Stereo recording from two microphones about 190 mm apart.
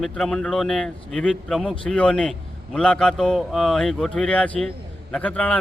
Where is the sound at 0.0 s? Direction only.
5° left (ahead or behind).